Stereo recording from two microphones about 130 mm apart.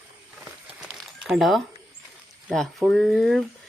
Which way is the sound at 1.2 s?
Centre (ahead or behind).